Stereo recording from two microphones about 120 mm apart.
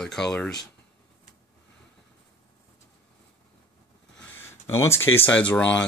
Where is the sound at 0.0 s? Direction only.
5° left (ahead or behind).